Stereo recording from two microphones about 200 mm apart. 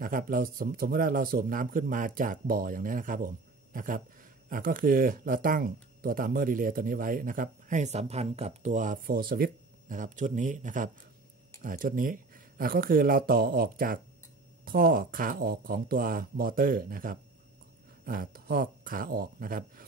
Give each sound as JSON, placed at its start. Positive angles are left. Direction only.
{"t": 0.0, "sound": "speech", "side_deg": -45}